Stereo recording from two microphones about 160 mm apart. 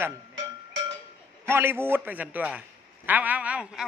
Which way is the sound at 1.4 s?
15° right (ahead or behind).